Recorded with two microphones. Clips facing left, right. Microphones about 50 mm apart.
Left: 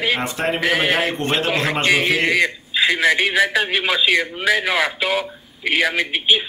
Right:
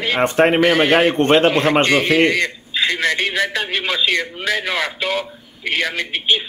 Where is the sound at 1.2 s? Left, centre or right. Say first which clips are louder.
Right 8 dB; right.